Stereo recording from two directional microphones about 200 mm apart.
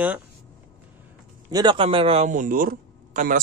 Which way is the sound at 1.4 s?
20° right (ahead or behind).